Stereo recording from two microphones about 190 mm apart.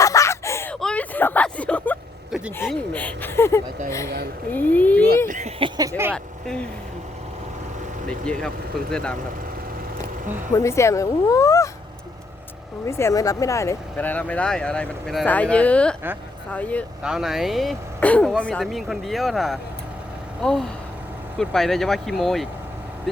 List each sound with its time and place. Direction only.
0.0 s a sound: 15° left (ahead or behind)
2.6 s a child's voice: 10° left (ahead or behind)
5.3 s a sound: 30° right (ahead or behind)
8.9 s speech: 5° left (ahead or behind)
10.5 s speech: 15° left (ahead or behind)
12.8 s speech: 15° left (ahead or behind)
17.0 s speech: 5° right (ahead or behind)